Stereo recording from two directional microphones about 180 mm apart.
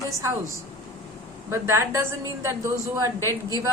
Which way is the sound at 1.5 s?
15° right (ahead or behind).